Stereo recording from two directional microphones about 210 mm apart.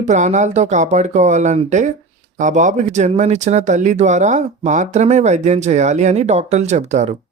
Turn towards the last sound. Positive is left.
turn(degrees=-35)  # may be behind; listen again after turning